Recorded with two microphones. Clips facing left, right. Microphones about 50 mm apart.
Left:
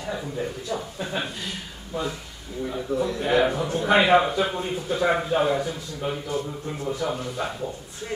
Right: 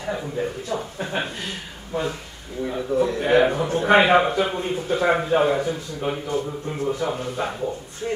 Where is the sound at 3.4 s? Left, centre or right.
Right.